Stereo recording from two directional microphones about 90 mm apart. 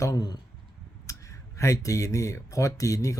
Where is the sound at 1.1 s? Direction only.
35° left (ahead or behind).